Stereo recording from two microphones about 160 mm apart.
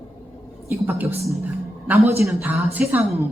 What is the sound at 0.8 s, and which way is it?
Speech, 15° right (ahead or behind).